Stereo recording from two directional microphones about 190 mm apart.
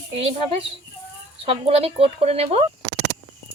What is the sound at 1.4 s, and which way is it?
Speech, 30° right (ahead or behind).